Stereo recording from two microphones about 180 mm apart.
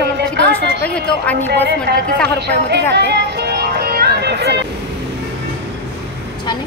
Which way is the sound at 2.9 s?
65° right (ahead or behind).